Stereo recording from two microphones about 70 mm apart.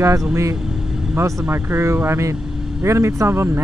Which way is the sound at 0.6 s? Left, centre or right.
Centre.